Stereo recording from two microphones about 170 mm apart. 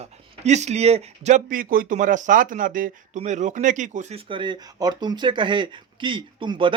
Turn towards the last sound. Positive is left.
turn(degrees=-30)  # may be behind; listen again after turning